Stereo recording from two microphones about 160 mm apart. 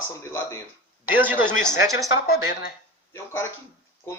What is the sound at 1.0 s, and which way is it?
A man's voice, 10° right (ahead or behind).